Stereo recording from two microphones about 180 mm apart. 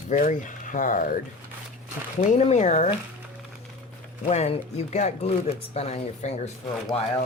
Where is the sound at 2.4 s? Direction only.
35° left (ahead or behind).